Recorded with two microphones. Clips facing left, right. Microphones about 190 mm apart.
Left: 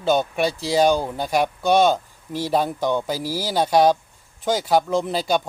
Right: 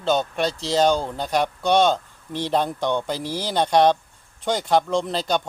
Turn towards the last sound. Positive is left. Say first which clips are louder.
# left 2 dB
turn(degrees=5)  # may be behind; listen again after turning